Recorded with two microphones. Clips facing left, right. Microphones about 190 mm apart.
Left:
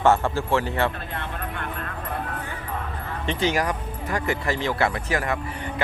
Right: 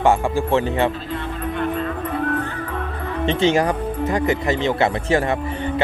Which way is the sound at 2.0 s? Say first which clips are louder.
Right 7 dB; 65° right (ahead or behind).